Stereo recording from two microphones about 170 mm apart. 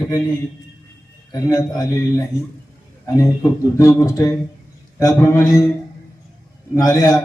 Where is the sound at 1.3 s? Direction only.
20° left (ahead or behind).